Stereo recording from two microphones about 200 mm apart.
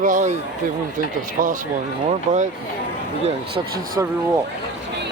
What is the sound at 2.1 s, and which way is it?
Speech, 35° right (ahead or behind).